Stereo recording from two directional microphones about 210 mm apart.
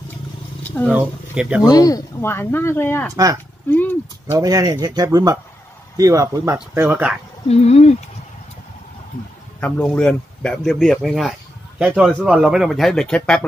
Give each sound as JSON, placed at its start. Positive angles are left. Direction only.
{"t": 0.8, "sound": "speech", "side_deg": -5}
{"t": 1.7, "sound": "speech", "side_deg": 15}
{"t": 4.3, "sound": "speech", "side_deg": -15}
{"t": 7.4, "sound": "speech", "side_deg": 30}
{"t": 9.6, "sound": "speech", "side_deg": 5}